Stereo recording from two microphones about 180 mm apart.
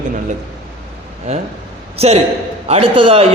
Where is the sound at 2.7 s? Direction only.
30° right (ahead or behind).